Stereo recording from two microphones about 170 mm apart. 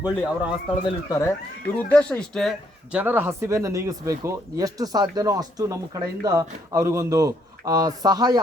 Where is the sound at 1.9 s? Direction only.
5° left (ahead or behind).